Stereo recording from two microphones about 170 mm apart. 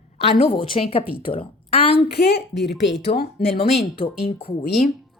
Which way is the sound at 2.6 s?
90° left.